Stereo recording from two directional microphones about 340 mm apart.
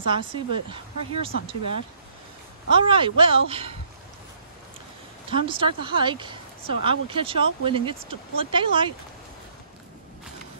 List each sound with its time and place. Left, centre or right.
0.1 s speech: centre
5.3 s speech: centre